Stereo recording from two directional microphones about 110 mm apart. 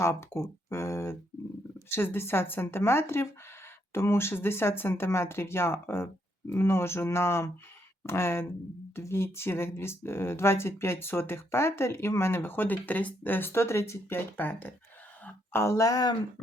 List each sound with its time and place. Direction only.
0.0 s speech: 25° left (ahead or behind)
15.2 s a sound: 15° left (ahead or behind)
15.6 s speech: 30° left (ahead or behind)